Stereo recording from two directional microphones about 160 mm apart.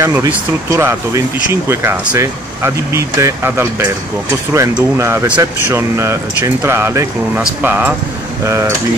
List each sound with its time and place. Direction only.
0.0 s speech: 20° right (ahead or behind)
4.9 s speech: 15° right (ahead or behind)